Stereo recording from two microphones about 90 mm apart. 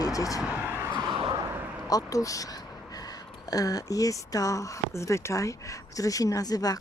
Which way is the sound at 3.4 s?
40° left (ahead or behind).